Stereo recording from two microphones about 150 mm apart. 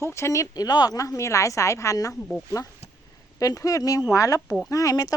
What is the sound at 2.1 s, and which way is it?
Speech, 5° left (ahead or behind).